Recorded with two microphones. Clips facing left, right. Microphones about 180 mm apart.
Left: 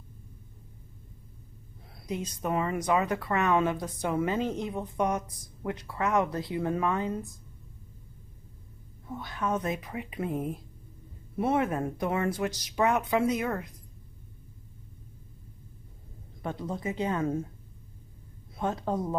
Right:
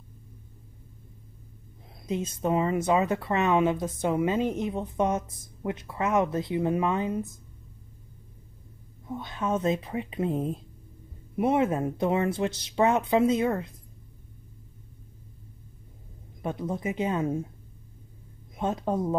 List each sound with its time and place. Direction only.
2.0 s a woman's voice: 25° right (ahead or behind)
9.0 s a woman's voice: 20° right (ahead or behind)
16.4 s a woman's voice: 20° right (ahead or behind)
18.6 s a woman's voice: 20° right (ahead or behind)